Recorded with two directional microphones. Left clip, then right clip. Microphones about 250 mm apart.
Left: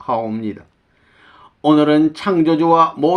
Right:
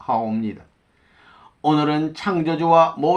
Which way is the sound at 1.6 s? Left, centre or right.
Left.